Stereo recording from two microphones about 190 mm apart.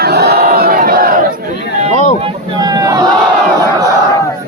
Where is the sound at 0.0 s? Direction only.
55° right (ahead or behind).